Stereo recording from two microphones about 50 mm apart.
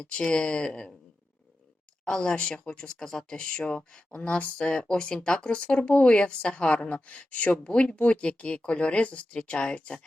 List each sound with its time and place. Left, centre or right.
0.0 s speech: left
2.0 s speech: centre